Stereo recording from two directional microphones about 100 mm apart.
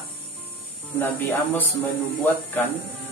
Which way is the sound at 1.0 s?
20° left (ahead or behind).